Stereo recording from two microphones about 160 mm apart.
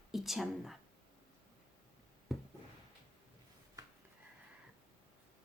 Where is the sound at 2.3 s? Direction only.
Centre (ahead or behind).